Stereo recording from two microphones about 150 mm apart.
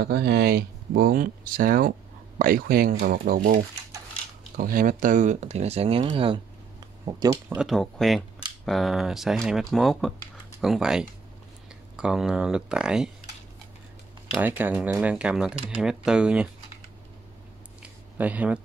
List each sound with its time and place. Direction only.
0.0 s speech: 90° right; by 3.3 s 70° right (ahead or behind)
4.6 s speech: 70° right (ahead or behind); by 6.4 s 35° right (ahead or behind)
7.1 s speech: 20° right (ahead or behind)
7.5 s speech: centre (ahead or behind)
14.2 s speech: 10° right (ahead or behind)
18.1 s speech: 10° right (ahead or behind)